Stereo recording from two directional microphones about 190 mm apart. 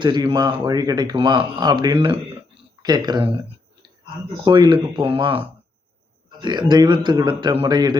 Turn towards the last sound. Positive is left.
turn(degrees=-20)  # may be behind; listen again after turning